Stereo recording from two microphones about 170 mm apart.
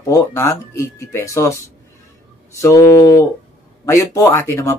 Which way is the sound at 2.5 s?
15° left (ahead or behind).